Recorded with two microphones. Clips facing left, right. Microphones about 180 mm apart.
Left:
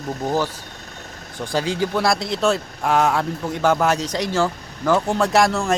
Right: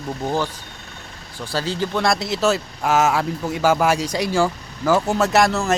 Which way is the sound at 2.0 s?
Centre (ahead or behind).